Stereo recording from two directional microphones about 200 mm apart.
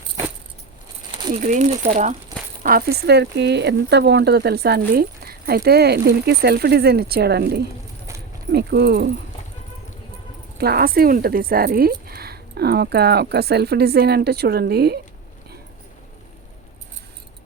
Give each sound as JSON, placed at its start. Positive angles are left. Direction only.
{"t": 1.3, "sound": "speech", "side_deg": -40}
{"t": 2.6, "sound": "speech", "side_deg": -50}
{"t": 10.6, "sound": "speech", "side_deg": -50}